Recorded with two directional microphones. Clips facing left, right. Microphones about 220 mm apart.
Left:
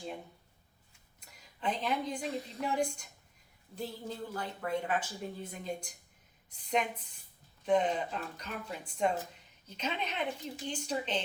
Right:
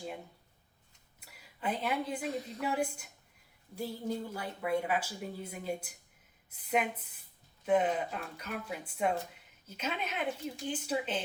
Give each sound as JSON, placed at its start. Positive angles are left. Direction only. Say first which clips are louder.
{"t": 1.2, "sound": "a woman's voice", "louder": "left 1 dB", "side_deg": -5}